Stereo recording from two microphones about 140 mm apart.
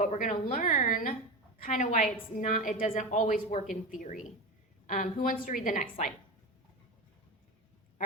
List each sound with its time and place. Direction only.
0.0 s a woman's voice: 60° left (ahead or behind); by 1.1 s 85° left
1.6 s a woman's voice: 65° left (ahead or behind)
5.6 s a woman's voice: 65° left (ahead or behind)